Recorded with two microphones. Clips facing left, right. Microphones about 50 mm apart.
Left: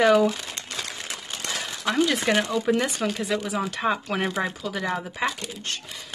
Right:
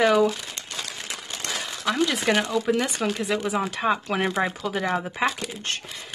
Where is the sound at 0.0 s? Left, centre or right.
Centre.